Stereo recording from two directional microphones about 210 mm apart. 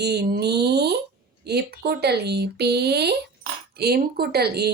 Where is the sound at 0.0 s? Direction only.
50° right (ahead or behind).